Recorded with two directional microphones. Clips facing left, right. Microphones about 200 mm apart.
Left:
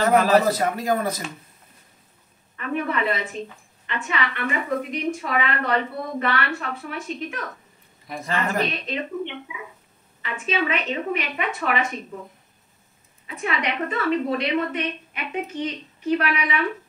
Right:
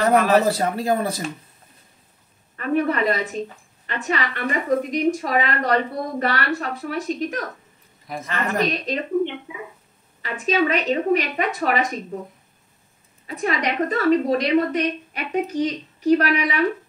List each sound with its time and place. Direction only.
0.5 s speech: 30° right (ahead or behind)
2.5 s a woman's voice: 40° right (ahead or behind)
8.1 s a woman's voice: centre (ahead or behind)
8.5 s a woman's voice: 40° right (ahead or behind)
13.3 s a woman's voice: 40° right (ahead or behind)